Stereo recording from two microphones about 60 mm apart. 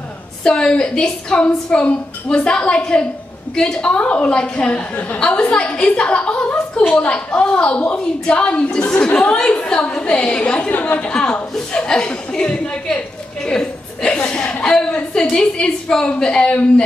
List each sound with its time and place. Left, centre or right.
0.4 s a woman's voice: centre